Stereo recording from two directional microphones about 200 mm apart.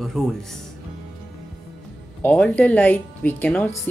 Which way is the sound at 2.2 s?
10° left (ahead or behind).